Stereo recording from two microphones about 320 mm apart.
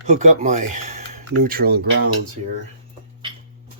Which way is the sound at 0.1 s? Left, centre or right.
Right.